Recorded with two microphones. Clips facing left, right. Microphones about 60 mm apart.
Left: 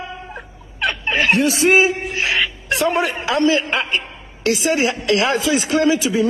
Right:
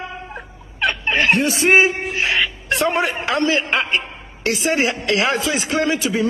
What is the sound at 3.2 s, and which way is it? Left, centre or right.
Speech, right.